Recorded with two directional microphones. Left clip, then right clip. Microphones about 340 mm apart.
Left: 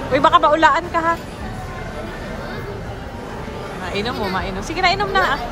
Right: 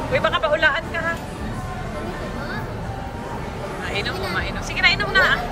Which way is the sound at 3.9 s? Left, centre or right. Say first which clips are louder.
Left 3 dB; centre.